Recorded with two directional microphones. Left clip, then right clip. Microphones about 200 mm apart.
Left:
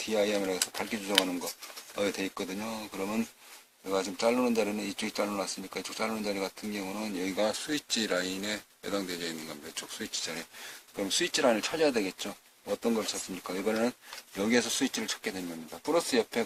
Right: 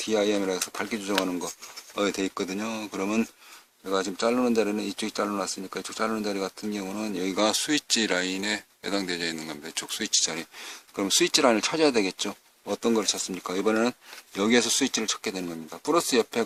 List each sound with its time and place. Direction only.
0.0 s speech: 45° right (ahead or behind)